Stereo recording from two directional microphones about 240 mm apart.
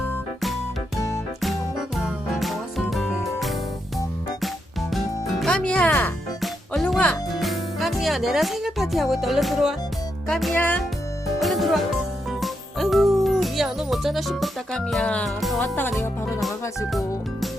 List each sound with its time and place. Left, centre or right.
2.4 s music: centre
4.9 s music: centre
16.4 s music: centre